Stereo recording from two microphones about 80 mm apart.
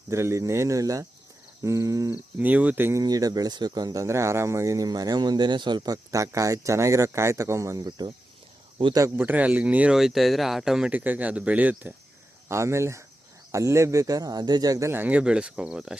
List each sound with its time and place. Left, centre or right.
0.1 s speech: right
2.4 s speech: centre
3.0 s speech: right
4.0 s speech: right
7.9 s speech: right
9.0 s speech: right
9.9 s speech: centre
10.9 s speech: right
12.5 s speech: right
14.9 s speech: centre